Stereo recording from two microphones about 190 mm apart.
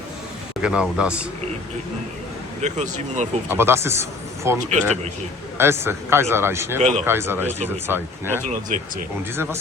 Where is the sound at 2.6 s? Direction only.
40° right (ahead or behind).